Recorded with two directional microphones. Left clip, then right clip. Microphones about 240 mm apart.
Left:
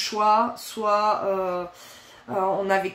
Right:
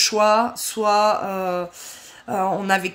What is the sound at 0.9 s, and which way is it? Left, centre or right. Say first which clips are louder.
Music: right 3 dB; right.